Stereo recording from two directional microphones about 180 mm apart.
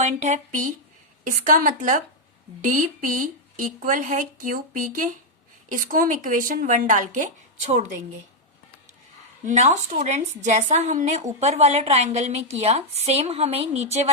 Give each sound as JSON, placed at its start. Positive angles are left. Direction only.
{"t": 0.0, "sound": "a woman's voice", "side_deg": -40}
{"t": 9.4, "sound": "a woman's voice", "side_deg": -40}